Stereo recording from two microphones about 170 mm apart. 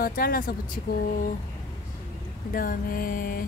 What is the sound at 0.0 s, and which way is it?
Speech, 60° left (ahead or behind).